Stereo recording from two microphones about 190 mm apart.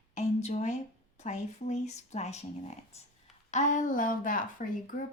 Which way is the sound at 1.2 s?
40° left (ahead or behind).